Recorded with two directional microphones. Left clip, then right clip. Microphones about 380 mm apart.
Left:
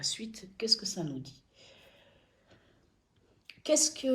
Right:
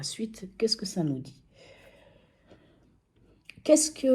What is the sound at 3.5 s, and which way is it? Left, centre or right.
Speech, centre.